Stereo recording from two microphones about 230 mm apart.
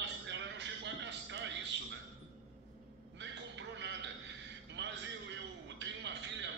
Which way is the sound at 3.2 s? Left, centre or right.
Right.